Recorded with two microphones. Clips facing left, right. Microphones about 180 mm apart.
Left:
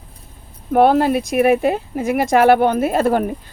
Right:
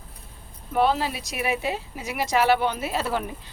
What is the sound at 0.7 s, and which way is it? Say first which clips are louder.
Speech: left 10 dB; 55° left (ahead or behind).